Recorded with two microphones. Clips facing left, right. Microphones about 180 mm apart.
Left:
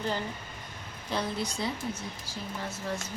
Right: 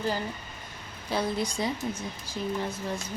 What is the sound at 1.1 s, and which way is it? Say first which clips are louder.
Speech: right 3 dB; 15° right (ahead or behind).